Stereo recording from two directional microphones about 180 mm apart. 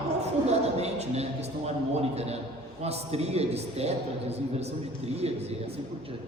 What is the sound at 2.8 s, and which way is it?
A man's voice, 35° right (ahead or behind).